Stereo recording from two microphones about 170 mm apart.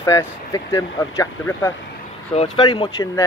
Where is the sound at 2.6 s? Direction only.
30° left (ahead or behind).